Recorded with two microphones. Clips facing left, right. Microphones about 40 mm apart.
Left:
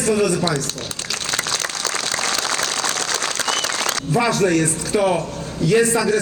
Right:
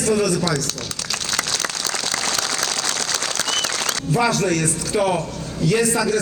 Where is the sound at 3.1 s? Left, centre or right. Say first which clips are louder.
Left 2 dB; left.